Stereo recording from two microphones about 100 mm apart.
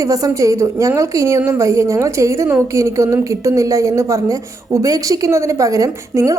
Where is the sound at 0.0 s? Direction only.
35° right (ahead or behind).